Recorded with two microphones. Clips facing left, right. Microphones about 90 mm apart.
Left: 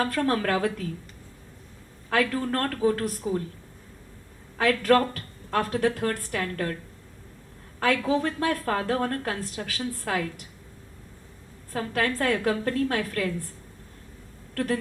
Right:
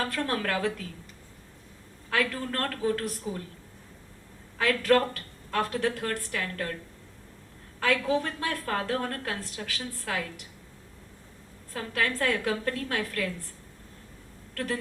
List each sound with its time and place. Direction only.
0.1 s a woman's voice: 35° left (ahead or behind)
2.0 s a woman's voice: 40° left (ahead or behind)
4.5 s a woman's voice: 45° left (ahead or behind)
7.8 s a woman's voice: 40° left (ahead or behind)
11.7 s a woman's voice: 40° left (ahead or behind)